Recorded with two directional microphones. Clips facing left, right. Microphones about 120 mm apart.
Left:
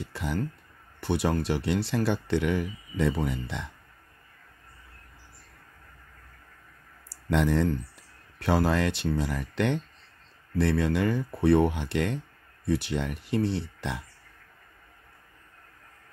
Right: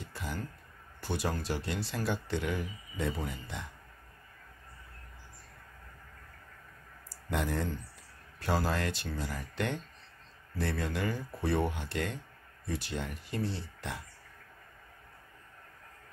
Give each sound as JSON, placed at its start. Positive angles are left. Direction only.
{"t": 0.0, "sound": "a sound", "side_deg": 70}
{"t": 1.0, "sound": "speech", "side_deg": 65}
{"t": 7.1, "sound": "speech", "side_deg": 85}
{"t": 8.4, "sound": "speech", "side_deg": 65}